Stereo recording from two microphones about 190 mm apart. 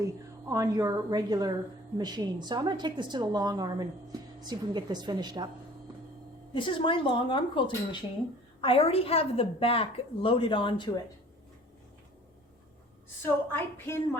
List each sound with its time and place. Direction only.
0.0 s a woman's voice: 15° right (ahead or behind)
6.5 s a woman's voice: 25° left (ahead or behind)
8.6 s a woman's voice: 30° left (ahead or behind)
13.2 s a woman's voice: 10° left (ahead or behind)